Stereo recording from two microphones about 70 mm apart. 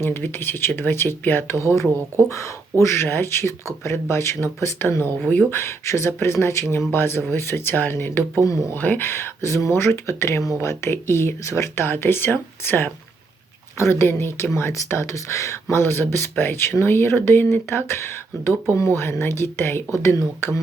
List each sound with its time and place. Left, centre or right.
0.0 s speech: left
1.5 s speech: left
8.4 s speech: left
8.7 s speech: left
15.7 s speech: left